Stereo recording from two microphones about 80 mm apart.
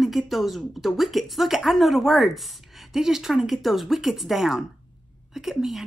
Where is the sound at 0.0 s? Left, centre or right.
Centre.